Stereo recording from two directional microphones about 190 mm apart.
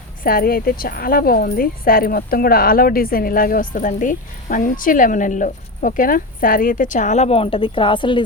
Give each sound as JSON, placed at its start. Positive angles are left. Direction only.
{"t": 0.2, "sound": "speech", "side_deg": 50}